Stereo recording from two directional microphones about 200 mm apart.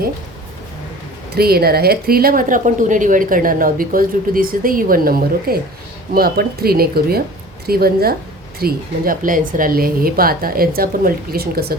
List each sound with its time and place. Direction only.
1.4 s a woman's voice: 50° right (ahead or behind)